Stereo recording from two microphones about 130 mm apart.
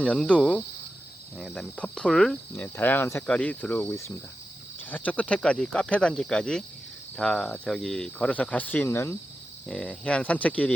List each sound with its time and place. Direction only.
0.0 s cricket: 10° left (ahead or behind)